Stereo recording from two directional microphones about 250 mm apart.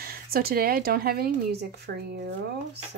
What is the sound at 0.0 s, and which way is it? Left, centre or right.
Speech, right.